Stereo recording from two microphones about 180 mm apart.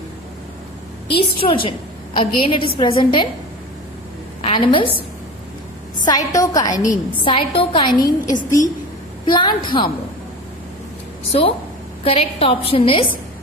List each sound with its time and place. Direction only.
1.4 s a woman's voice: 30° left (ahead or behind)
4.4 s a woman's voice: 30° left (ahead or behind)
6.1 s a woman's voice: 20° left (ahead or behind)
7.9 s a woman's voice: 50° left (ahead or behind)
9.2 s a woman's voice: 25° left (ahead or behind)
11.3 s a woman's voice: 35° left (ahead or behind)